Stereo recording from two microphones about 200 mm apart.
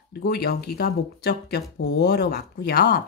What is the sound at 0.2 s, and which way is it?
A woman's voice, 50° left (ahead or behind).